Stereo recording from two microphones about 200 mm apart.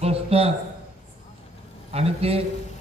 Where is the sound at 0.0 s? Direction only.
30° right (ahead or behind).